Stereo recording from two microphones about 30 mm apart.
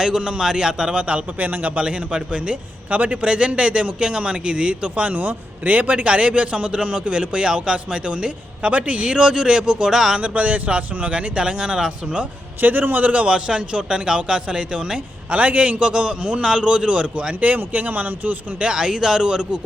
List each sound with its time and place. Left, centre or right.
0.3 s speech: right
0.9 s speech: right
1.4 s speech: right
2.9 s speech: right
5.1 s a man's voice: right
6.1 s speech: right
6.5 s speech: right
10.2 s speech: right
12.6 s a man's voice: right
13.2 s speech: right
14.9 s a man's voice: right
15.8 s speech: right
17.4 s speech: right
18.6 s speech: right